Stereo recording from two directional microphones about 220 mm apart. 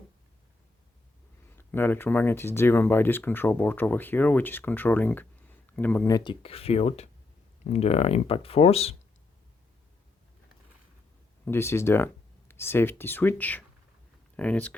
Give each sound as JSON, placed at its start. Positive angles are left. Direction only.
{"t": 1.5, "sound": "speech", "side_deg": 10}
{"t": 11.4, "sound": "speech", "side_deg": 10}